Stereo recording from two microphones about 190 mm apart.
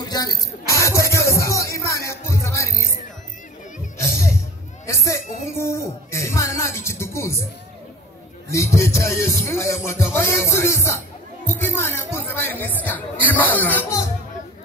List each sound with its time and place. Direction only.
0.0 s music: 20° left (ahead or behind)
4.0 s music: 15° left (ahead or behind)
4.8 s a sound: 15° left (ahead or behind)
5.6 s speech: 15° left (ahead or behind)
8.5 s music: 15° left (ahead or behind)